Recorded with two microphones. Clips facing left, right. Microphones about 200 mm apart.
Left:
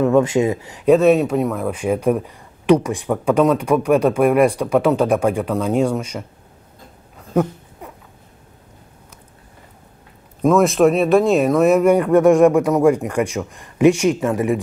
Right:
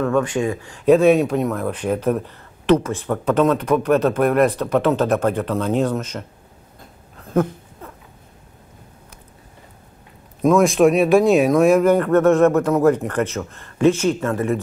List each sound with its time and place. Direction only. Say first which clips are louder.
0.0 s speech: left 4 dB; 20° left (ahead or behind)
0.8 s speech: even; centre (ahead or behind)
7.2 s a sound: left 1 dB; 10° left (ahead or behind)
10.4 s speech: even; centre (ahead or behind)